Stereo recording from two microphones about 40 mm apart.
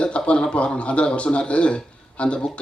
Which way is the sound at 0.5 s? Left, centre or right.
Left.